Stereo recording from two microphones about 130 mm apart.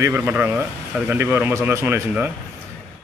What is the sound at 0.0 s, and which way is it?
A man's voice, 15° right (ahead or behind).